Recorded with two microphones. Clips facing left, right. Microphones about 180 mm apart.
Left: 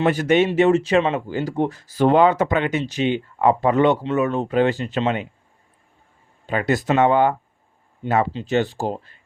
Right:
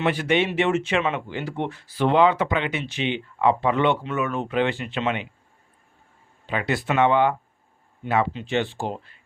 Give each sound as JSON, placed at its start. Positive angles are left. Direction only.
{"t": 0.0, "sound": "speech", "side_deg": 45}
{"t": 6.4, "sound": "speech", "side_deg": 45}